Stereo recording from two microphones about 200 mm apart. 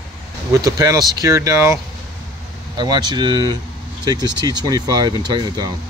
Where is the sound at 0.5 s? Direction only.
20° right (ahead or behind).